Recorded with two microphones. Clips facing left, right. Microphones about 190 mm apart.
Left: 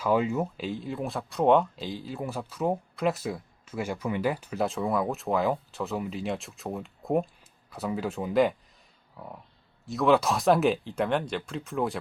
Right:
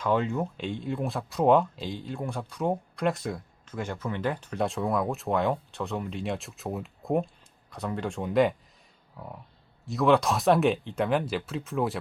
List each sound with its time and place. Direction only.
0.0 s speech: 5° left (ahead or behind)
9.1 s a sound: centre (ahead or behind)
9.8 s speech: centre (ahead or behind)